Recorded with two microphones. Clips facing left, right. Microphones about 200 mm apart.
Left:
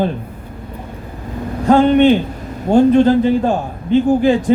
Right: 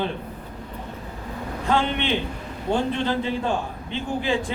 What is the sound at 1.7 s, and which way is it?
A man's voice, 45° left (ahead or behind).